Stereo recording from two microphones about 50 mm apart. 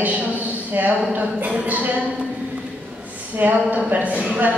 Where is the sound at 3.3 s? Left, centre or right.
Right.